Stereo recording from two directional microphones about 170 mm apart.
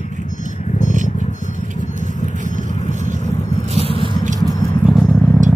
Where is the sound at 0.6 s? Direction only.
45° left (ahead or behind).